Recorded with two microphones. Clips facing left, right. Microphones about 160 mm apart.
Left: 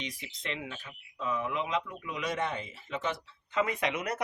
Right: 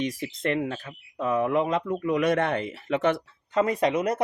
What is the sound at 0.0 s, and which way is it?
Speech, 50° right (ahead or behind).